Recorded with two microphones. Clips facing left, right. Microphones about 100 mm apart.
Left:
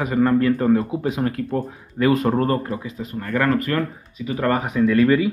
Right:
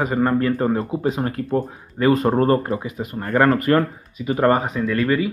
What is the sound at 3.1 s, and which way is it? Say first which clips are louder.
Speech: right 3 dB; 40° right (ahead or behind).